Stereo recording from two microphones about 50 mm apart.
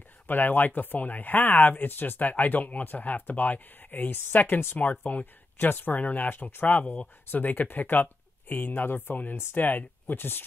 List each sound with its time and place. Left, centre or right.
0.3 s speech: left
6.8 s speech: left
7.2 s speech: left